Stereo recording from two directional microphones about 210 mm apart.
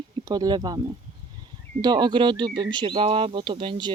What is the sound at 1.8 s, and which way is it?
Speech, 20° right (ahead or behind).